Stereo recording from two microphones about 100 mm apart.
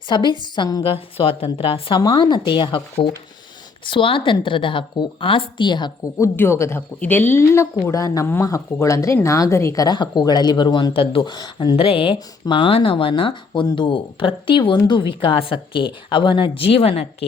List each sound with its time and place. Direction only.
0.1 s speech: 50° left (ahead or behind)
0.8 s speech: 70° left (ahead or behind)
2.0 s a woman's voice: 40° left (ahead or behind)
6.1 s speech: 25° left (ahead or behind)
9.8 s speech: 45° left (ahead or behind)
10.9 s speech: 65° left (ahead or behind); by 11.8 s 45° left (ahead or behind)
11.8 s a woman's voice: 65° left (ahead or behind); by 17.2 s 80° left